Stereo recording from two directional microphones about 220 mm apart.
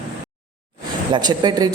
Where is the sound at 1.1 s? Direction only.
20° right (ahead or behind).